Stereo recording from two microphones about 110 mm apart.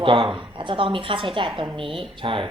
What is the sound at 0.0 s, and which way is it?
A woman's voice, 50° right (ahead or behind).